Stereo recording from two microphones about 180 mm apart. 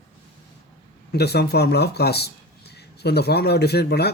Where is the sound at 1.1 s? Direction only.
65° left (ahead or behind).